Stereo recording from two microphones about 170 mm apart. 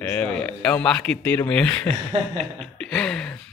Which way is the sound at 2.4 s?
5° left (ahead or behind).